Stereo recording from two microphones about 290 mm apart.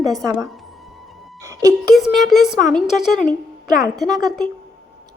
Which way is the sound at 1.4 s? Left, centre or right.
Centre.